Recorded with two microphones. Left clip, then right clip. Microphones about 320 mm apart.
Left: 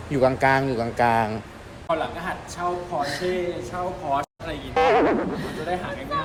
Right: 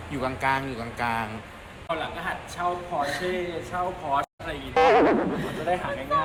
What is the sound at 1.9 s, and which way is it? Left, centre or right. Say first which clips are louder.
A man's voice: left 4 dB; centre.